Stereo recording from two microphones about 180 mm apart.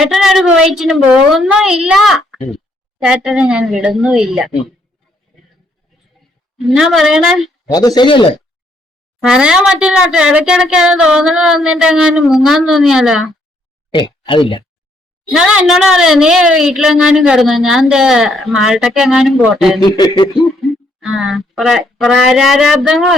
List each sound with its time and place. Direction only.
0.0 s a woman's voice: centre (ahead or behind)
6.7 s a woman's voice: centre (ahead or behind)
7.7 s speech: 20° left (ahead or behind)
9.2 s a woman's voice: 5° right (ahead or behind)
13.9 s speech: 25° left (ahead or behind)
15.3 s a woman's voice: 5° right (ahead or behind)
19.8 s speech: 25° left (ahead or behind)
20.4 s speech: centre (ahead or behind)